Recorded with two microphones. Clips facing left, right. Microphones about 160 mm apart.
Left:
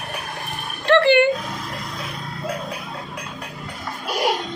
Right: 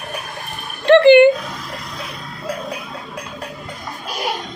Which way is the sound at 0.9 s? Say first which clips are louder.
Right 7 dB; 20° right (ahead or behind).